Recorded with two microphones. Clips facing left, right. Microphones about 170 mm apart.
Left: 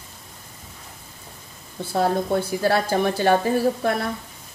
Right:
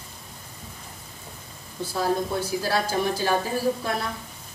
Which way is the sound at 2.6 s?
60° left (ahead or behind).